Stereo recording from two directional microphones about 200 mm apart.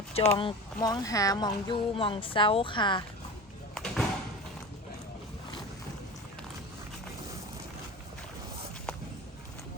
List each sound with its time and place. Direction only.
0.1 s speech: 30° left (ahead or behind)
3.8 s thump: 5° left (ahead or behind)